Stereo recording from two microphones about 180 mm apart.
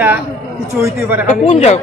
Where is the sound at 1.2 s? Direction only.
35° left (ahead or behind).